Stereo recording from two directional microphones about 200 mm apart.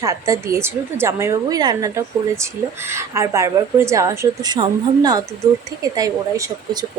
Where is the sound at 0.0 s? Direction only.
15° right (ahead or behind).